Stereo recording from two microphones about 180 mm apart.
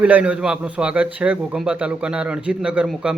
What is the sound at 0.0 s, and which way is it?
A man's voice, 5° right (ahead or behind).